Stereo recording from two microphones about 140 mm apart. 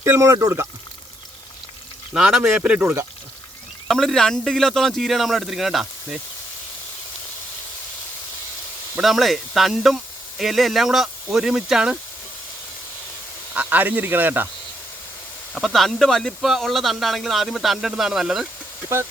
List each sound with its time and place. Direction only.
0.0 s speech: 20° right (ahead or behind)
2.1 s speech: 5° right (ahead or behind)
3.8 s speech: centre (ahead or behind)
9.0 s speech: centre (ahead or behind)
13.5 s speech: 10° right (ahead or behind)
15.5 s speech: centre (ahead or behind)